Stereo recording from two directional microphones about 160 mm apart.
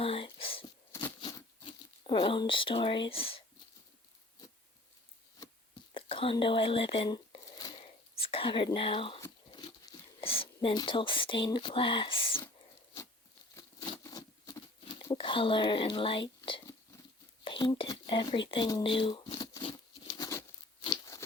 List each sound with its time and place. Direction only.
0.0 s whispering: 35° left (ahead or behind)
1.2 s a sound: 25° left (ahead or behind)
2.0 s speech: 35° left (ahead or behind)
5.9 s whispering: 35° left (ahead or behind)
6.3 s speech: 35° left (ahead or behind)
7.8 s whispering: 35° left (ahead or behind)
9.5 s a sound: 30° left (ahead or behind)
13.6 s patter: 25° left (ahead or behind)
15.1 s speech: 30° left (ahead or behind)
16.5 s a sound: 30° left (ahead or behind)
20.8 s crunch: 25° left (ahead or behind)